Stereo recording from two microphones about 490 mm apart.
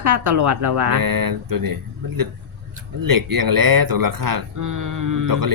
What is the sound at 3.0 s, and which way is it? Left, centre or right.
Speech, right.